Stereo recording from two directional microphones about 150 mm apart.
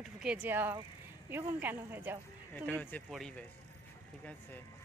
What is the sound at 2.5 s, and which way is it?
Speech, 10° left (ahead or behind).